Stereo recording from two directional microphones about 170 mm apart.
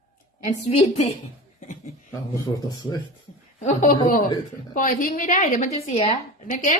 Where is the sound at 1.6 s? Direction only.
50° left (ahead or behind).